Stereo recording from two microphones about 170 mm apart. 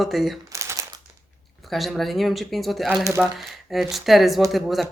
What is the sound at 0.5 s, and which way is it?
Crumpling, 15° right (ahead or behind).